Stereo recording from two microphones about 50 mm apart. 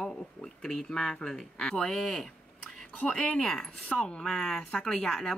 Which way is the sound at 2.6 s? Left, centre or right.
Centre.